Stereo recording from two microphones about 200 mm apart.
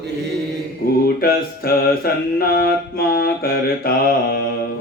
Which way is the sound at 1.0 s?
50° left (ahead or behind).